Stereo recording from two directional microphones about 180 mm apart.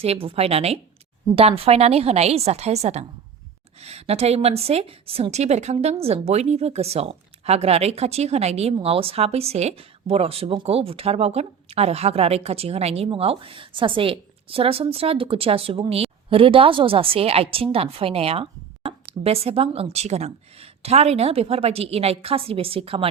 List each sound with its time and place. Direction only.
0.0 s a woman's voice: 30° right (ahead or behind)